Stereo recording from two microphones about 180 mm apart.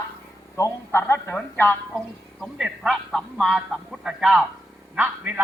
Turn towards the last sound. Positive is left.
turn(degrees=-10)  # may be behind; listen again after turning